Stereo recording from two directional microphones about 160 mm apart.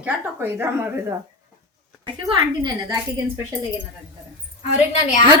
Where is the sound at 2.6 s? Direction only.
25° right (ahead or behind).